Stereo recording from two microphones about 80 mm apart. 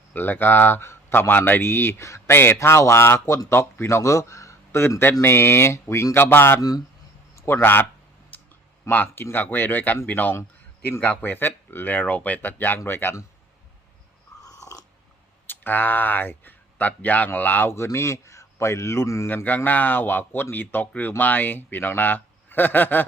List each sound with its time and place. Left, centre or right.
0.1 s speech: left
6.6 s speech: left
7.4 s a man's voice: left
8.9 s speech: left
14.4 s dog: left
15.4 s speech: left
19.3 s speech: left